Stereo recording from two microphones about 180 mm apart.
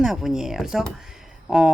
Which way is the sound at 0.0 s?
Centre (ahead or behind).